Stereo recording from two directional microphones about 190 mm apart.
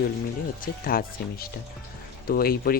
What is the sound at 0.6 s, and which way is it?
Speech, 50° left (ahead or behind).